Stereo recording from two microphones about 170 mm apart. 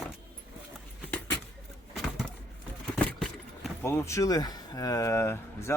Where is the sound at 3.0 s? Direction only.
5° left (ahead or behind).